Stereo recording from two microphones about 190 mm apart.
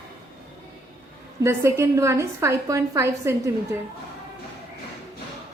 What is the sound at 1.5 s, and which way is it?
A woman's voice, 15° right (ahead or behind).